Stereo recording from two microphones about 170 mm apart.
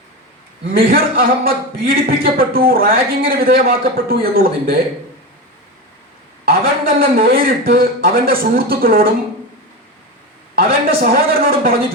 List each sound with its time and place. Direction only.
0.7 s a man's voice: 60° right (ahead or behind)
6.4 s a man's voice: 60° right (ahead or behind)
10.5 s a man's voice: 60° right (ahead or behind)